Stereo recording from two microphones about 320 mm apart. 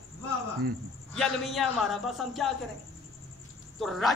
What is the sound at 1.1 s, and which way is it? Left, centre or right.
Speech, centre.